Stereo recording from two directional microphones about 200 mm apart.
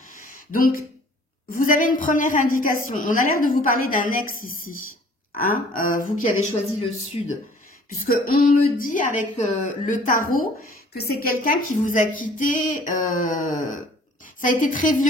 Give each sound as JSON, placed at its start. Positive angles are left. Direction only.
{"t": 0.1, "sound": "a sound", "side_deg": 45}
{"t": 1.5, "sound": "a woman's voice", "side_deg": 45}
{"t": 8.0, "sound": "a woman's voice", "side_deg": 45}